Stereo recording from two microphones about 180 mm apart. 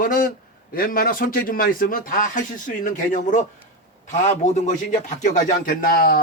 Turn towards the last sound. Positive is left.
turn(degrees=55)  # may be behind; listen again after turning